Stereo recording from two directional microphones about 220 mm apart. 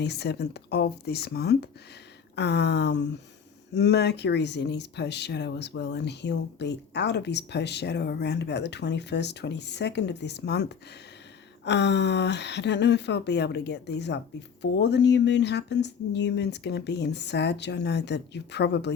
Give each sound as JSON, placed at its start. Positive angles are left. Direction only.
{"t": 0.0, "sound": "speech", "side_deg": 50}